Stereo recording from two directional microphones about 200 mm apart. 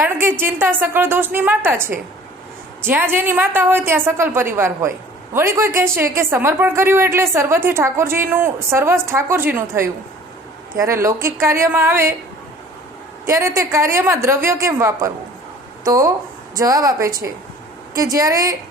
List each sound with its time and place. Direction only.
0.0 s a woman's voice: 10° right (ahead or behind)
13.2 s a woman's voice: 15° right (ahead or behind)